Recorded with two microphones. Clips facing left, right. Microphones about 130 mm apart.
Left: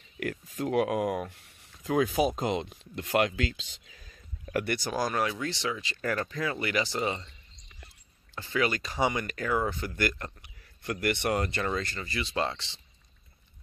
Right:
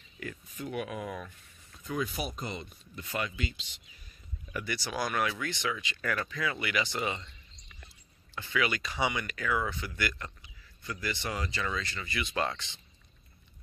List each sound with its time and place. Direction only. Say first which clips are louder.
0.2 s speech: left 8 dB; 85° left
4.1 s a sound: left 8 dB; 85° left
4.7 s speech: right 1 dB; 45° left (ahead or behind)
8.4 s speech: left 3 dB; 40° left (ahead or behind)
10.4 s speech: left 7 dB; 65° left (ahead or behind); by 12.8 s 30° left (ahead or behind)